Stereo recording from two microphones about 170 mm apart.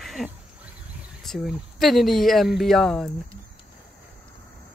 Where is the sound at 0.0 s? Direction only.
Centre (ahead or behind).